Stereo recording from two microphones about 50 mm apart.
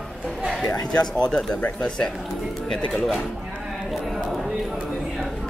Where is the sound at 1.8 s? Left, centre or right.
Centre.